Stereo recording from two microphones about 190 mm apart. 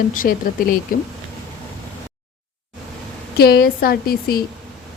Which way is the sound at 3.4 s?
55° left (ahead or behind).